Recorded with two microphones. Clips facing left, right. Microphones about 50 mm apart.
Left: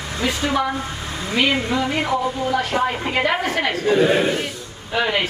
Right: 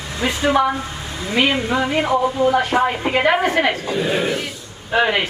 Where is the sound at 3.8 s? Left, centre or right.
Left.